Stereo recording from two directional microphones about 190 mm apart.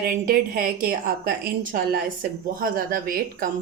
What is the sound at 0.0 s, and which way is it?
A woman's voice, 50° right (ahead or behind).